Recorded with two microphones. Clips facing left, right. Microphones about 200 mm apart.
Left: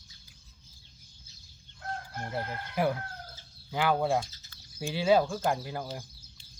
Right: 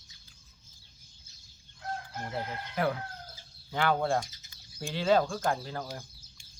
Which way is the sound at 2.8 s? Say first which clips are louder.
Left 2 dB; 10° left (ahead or behind).